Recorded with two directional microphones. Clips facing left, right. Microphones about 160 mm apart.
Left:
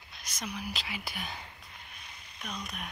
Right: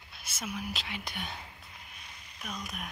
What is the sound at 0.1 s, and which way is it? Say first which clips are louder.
Speech: right 1 dB; 5° right (ahead or behind).